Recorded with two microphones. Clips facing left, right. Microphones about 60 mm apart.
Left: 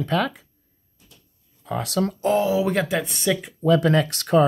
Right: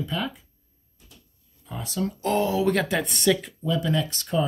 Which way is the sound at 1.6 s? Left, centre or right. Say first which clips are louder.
Left 6 dB; left.